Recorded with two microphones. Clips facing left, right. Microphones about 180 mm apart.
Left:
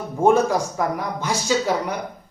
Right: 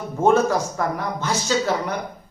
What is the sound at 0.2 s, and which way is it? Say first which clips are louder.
Speech: left 1 dB; 10° left (ahead or behind).